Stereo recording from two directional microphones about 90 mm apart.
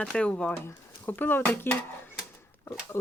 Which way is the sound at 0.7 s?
25° left (ahead or behind).